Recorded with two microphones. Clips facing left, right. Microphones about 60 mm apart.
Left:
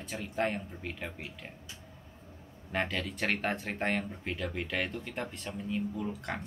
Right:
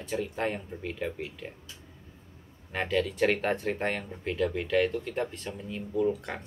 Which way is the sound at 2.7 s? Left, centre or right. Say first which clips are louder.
Right 5 dB; centre.